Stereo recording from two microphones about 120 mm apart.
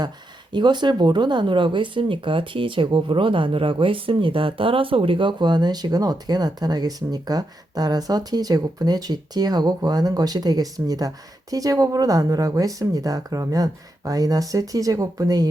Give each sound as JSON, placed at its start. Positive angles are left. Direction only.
{"t": 0.5, "sound": "speech", "side_deg": -40}